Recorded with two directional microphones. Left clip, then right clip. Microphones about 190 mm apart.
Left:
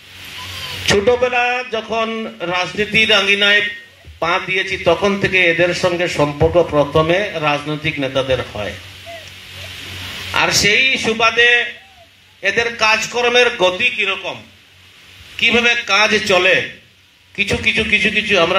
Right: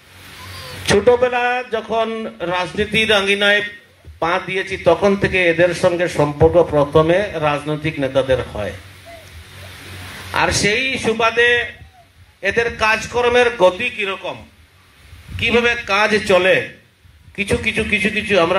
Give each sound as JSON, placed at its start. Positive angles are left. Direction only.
{"t": 0.8, "sound": "a man's voice", "side_deg": -40}
{"t": 10.3, "sound": "a man's voice", "side_deg": -35}
{"t": 15.4, "sound": "a man's voice", "side_deg": -40}